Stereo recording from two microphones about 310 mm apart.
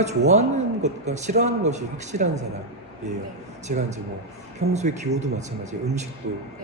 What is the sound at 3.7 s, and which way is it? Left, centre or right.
A man's voice, right.